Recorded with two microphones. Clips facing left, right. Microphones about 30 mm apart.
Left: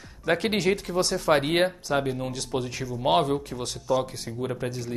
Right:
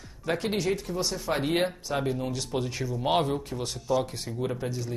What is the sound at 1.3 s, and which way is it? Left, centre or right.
Speech, left.